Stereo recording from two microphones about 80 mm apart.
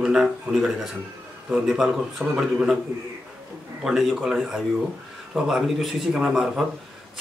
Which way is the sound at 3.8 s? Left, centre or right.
Centre.